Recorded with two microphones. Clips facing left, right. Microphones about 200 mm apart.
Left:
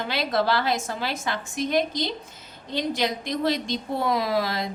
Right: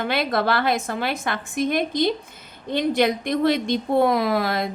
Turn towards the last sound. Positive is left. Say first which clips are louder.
# right 3 dB
turn(degrees=-55)  # may be behind; listen again after turning